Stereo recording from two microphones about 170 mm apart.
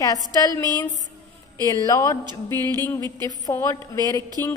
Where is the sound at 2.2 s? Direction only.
25° right (ahead or behind).